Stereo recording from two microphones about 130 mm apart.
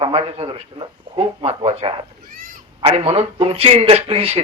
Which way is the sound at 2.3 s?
90° right.